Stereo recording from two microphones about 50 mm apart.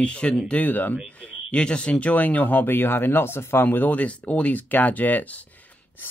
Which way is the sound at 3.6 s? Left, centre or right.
Left.